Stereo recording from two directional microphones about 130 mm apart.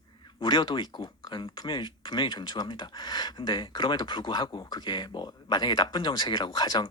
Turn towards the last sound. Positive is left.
turn(degrees=35)  # may be behind; listen again after turning